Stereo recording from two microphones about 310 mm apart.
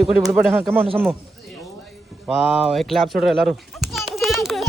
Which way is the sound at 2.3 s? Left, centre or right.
Centre.